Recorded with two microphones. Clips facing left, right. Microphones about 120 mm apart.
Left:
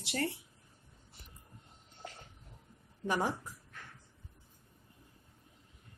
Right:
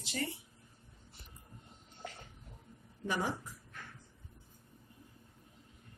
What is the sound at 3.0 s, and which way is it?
Speech, 45° left (ahead or behind).